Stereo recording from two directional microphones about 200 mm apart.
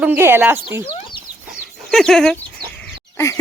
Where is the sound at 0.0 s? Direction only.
10° right (ahead or behind).